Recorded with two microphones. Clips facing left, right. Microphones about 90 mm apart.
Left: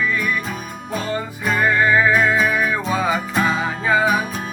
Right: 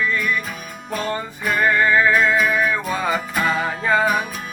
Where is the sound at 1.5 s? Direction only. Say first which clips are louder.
Even; 10° left (ahead or behind).